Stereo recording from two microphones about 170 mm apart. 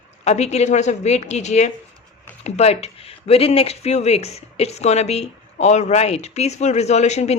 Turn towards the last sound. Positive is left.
turn(degrees=40)  # may be behind; listen again after turning